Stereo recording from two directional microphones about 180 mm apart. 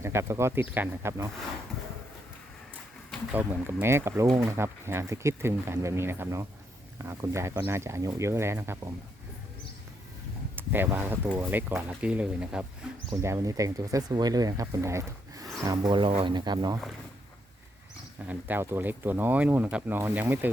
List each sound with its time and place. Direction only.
0.0 s speech: 15° right (ahead or behind)
3.3 s speech: 10° right (ahead or behind)
10.5 s speech: 10° right (ahead or behind)
13.1 s speech: 15° right (ahead or behind)
18.3 s speech: 10° right (ahead or behind)